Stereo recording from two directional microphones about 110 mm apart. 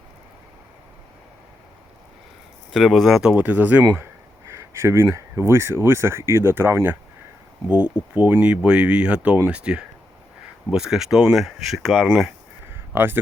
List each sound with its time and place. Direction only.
2.7 s speech: centre (ahead or behind)
4.4 s speech: 25° right (ahead or behind)
7.7 s speech: 10° right (ahead or behind)
12.9 s speech: 20° right (ahead or behind)